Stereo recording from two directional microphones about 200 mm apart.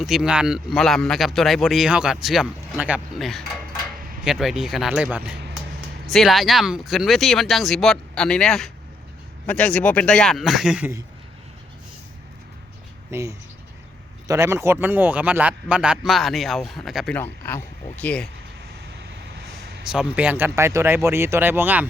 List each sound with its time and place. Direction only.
0.0 s a man's voice: centre (ahead or behind)
13.1 s speech: 15° right (ahead or behind)
17.2 s speech: 10° left (ahead or behind)
18.9 s a sound: 55° right (ahead or behind)
19.9 s speech: 5° right (ahead or behind)